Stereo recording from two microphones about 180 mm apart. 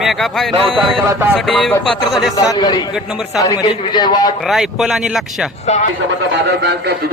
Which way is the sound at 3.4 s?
20° left (ahead or behind).